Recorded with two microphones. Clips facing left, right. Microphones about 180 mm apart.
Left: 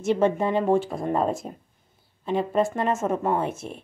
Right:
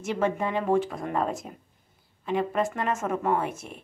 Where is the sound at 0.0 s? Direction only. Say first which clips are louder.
Left 5 dB; 30° left (ahead or behind).